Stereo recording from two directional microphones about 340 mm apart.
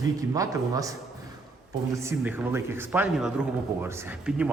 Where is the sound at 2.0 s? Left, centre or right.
Centre.